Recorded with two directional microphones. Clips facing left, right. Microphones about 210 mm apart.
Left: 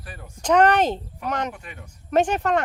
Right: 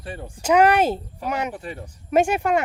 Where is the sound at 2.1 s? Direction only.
10° right (ahead or behind).